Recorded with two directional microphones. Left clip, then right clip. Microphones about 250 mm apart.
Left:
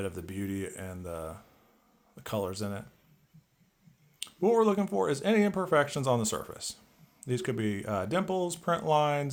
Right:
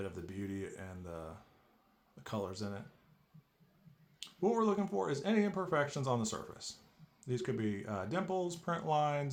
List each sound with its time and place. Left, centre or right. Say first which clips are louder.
0.0 s speech: left 7 dB; left
4.2 s speech: left 8 dB; left